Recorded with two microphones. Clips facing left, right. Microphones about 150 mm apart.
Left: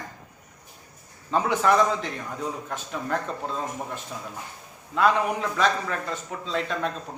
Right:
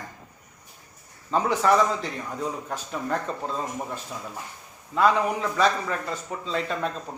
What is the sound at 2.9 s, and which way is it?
Speech, centre (ahead or behind).